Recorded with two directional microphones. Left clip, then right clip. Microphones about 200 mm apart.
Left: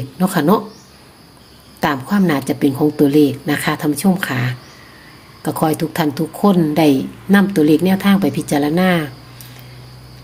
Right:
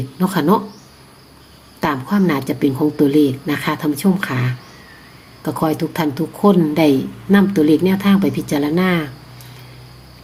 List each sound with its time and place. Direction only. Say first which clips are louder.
0.2 s a woman's voice: left 1 dB; 15° left (ahead or behind)
1.8 s a woman's voice: left 1 dB; 15° left (ahead or behind)